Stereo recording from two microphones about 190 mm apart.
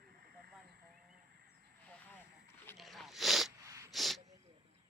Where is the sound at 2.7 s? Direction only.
Centre (ahead or behind).